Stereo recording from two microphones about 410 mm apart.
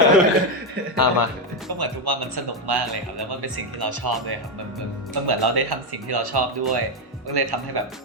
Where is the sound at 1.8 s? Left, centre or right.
Right.